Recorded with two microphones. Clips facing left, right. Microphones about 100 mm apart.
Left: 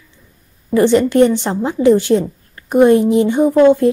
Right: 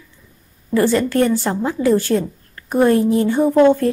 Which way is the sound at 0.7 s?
20° left (ahead or behind).